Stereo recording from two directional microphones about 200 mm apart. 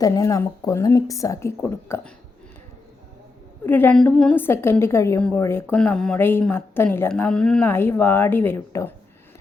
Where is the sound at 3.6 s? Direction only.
10° left (ahead or behind).